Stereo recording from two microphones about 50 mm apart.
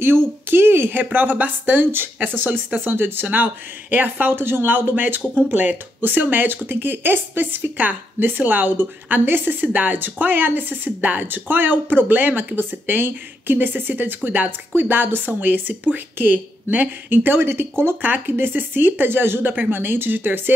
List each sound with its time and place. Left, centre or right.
0.0 s speech: right
18.0 s speech: right